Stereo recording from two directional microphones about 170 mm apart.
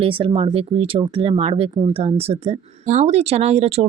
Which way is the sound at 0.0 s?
30° right (ahead or behind).